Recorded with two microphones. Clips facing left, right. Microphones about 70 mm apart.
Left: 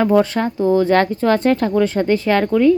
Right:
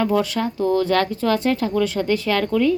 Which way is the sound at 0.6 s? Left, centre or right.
Left.